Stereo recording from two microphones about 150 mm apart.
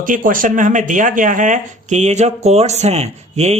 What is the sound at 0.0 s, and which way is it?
Speech, 65° right (ahead or behind).